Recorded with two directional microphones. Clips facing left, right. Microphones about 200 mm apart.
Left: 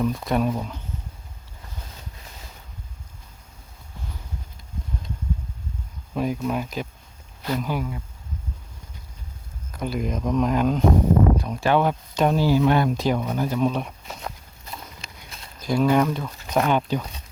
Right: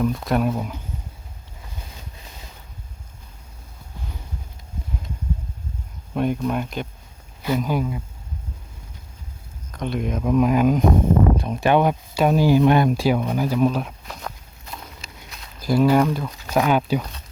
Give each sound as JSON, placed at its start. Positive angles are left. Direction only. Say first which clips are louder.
{"t": 0.0, "sound": "speech", "louder": "right 2 dB", "side_deg": 0}
{"t": 6.1, "sound": "speech", "louder": "right 2 dB", "side_deg": 0}
{"t": 7.4, "sound": "speech", "louder": "right 4 dB", "side_deg": -10}
{"t": 9.7, "sound": "speech", "louder": "right 1 dB", "side_deg": 5}
{"t": 11.3, "sound": "speech", "louder": "right 3 dB", "side_deg": -25}
{"t": 17.0, "sound": "speech", "louder": "right 1 dB", "side_deg": 10}